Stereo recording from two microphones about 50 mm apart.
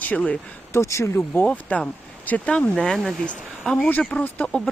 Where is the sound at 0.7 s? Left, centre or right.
Left.